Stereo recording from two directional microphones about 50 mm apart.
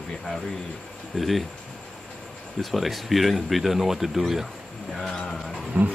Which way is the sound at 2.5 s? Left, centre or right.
Centre.